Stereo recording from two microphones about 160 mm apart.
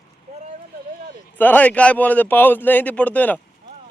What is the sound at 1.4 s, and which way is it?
A man's voice, 10° left (ahead or behind).